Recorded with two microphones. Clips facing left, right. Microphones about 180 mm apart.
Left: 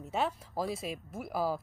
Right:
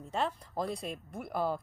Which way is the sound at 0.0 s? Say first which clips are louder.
Left 1 dB; 5° left (ahead or behind).